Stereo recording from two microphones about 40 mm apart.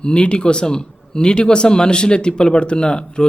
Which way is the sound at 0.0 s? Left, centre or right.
Left.